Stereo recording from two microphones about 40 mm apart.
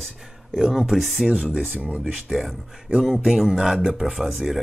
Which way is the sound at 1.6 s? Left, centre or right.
Right.